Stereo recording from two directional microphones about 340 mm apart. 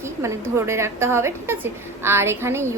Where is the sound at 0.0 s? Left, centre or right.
Centre.